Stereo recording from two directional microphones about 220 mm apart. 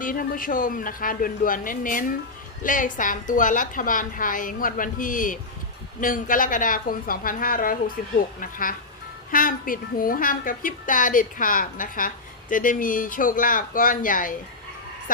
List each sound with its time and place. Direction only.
0.0 s a woman's voice: 40° left (ahead or behind)